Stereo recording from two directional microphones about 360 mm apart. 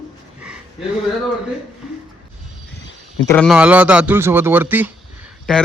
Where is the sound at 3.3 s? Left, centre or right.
Centre.